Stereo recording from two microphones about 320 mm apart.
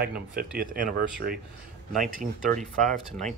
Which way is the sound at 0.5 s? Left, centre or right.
Right.